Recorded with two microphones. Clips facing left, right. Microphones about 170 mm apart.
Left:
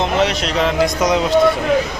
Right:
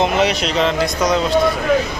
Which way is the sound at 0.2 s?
5° right (ahead or behind).